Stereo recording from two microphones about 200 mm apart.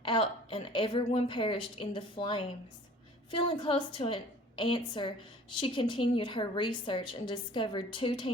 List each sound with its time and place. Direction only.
0.0 s a woman's voice: 25° left (ahead or behind)